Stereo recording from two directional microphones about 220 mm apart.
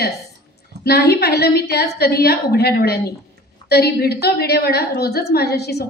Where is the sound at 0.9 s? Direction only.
45° left (ahead or behind).